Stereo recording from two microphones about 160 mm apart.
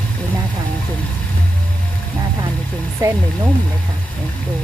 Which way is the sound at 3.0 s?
15° right (ahead or behind).